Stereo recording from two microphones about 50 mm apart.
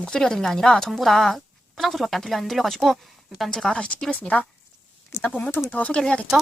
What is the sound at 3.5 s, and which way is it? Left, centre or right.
Speech, centre.